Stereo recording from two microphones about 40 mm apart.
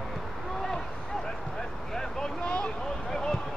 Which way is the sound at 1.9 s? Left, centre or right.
Centre.